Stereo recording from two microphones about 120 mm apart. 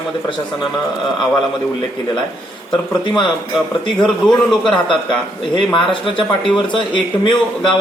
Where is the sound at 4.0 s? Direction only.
5° left (ahead or behind).